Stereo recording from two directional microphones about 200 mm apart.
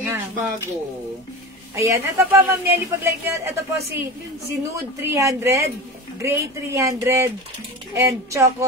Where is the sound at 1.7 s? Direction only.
15° right (ahead or behind).